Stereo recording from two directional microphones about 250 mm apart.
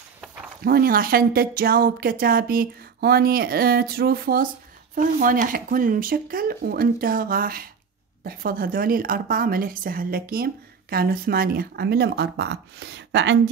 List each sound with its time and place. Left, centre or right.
0.7 s a woman's voice: right